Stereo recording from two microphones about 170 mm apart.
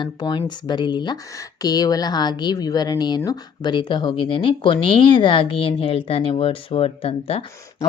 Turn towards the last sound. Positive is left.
turn(degrees=35)  # may be behind; listen again after turning